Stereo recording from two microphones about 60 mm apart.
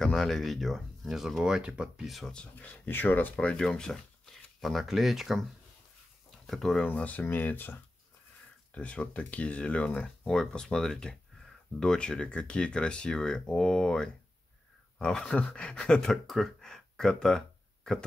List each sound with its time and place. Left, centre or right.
0.0 s speech: centre
2.0 s speech: centre
2.6 s speech: left
3.3 s speech: centre
6.9 s speech: left
8.7 s speech: centre